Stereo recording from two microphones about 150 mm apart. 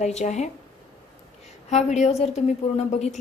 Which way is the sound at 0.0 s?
50° left (ahead or behind).